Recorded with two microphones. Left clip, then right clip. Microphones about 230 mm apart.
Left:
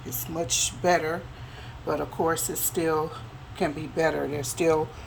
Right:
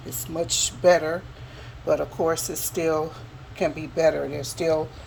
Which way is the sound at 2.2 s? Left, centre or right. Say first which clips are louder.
Right 2 dB; centre.